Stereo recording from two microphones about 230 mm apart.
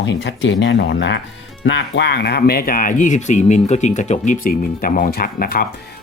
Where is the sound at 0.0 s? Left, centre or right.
Left.